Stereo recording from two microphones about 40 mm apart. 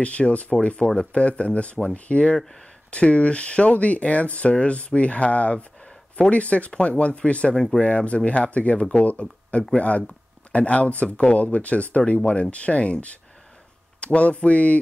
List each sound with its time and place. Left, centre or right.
0.0 s speech: left